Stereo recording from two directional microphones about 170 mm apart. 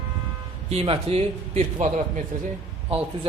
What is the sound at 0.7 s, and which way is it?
Speech, 35° right (ahead or behind).